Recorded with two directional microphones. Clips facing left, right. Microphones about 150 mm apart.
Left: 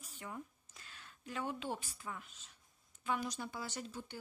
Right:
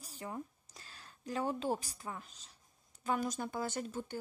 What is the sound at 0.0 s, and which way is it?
A woman's voice, 35° right (ahead or behind).